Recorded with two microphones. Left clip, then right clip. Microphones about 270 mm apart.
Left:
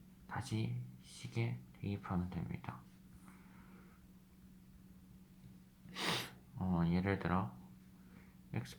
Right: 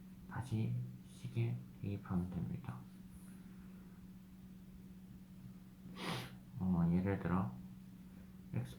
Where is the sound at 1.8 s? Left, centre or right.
Left.